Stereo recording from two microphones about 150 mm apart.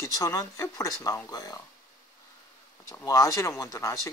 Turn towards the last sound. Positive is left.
turn(degrees=20)  # may be behind; listen again after turning